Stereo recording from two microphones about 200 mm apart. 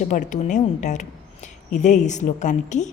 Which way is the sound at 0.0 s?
40° left (ahead or behind).